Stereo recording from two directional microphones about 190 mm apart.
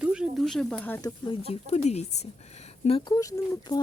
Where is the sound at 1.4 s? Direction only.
35° left (ahead or behind).